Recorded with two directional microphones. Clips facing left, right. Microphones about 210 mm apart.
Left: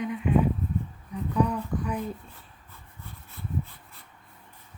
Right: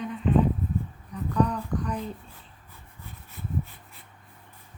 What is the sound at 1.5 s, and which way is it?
Speech, 10° left (ahead or behind).